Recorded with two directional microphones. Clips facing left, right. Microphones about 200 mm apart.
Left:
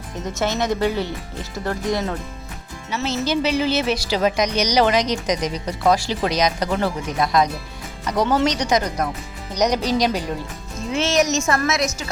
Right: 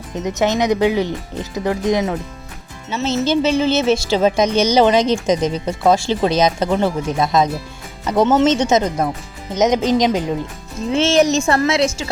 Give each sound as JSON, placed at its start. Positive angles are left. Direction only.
{"t": 0.2, "sound": "speech", "side_deg": -20}
{"t": 3.2, "sound": "speech", "side_deg": -25}